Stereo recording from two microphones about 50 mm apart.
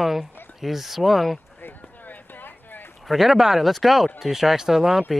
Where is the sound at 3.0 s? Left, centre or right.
Centre.